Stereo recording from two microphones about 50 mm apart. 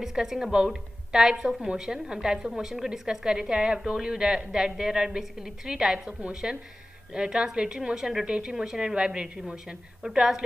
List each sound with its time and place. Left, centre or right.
0.0 s a woman's voice: centre